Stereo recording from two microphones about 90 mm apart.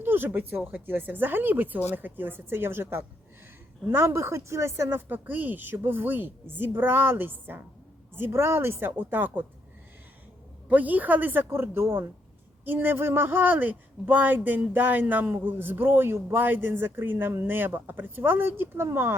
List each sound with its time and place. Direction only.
0.0 s speech: 25° right (ahead or behind)
10.7 s speech: 20° right (ahead or behind)